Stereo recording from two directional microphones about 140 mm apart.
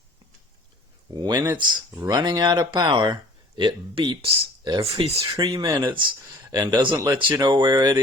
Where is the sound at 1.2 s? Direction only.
30° right (ahead or behind).